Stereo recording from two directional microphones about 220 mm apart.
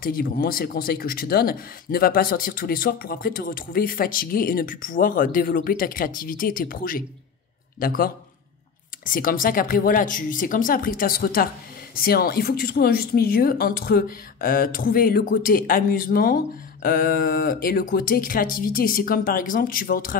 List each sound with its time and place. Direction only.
0.0 s speech: 40° left (ahead or behind)